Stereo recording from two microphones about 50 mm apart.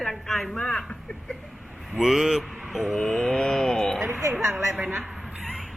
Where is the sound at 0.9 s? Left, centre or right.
Centre.